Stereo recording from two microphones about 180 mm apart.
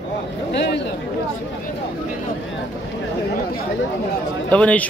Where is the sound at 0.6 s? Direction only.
75° left (ahead or behind).